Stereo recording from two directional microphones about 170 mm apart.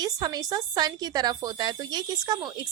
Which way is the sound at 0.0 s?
20° right (ahead or behind).